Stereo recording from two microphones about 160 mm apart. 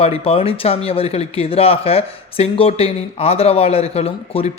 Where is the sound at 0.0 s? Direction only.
35° left (ahead or behind).